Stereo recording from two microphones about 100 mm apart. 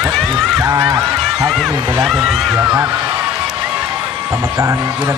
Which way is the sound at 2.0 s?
Centre (ahead or behind).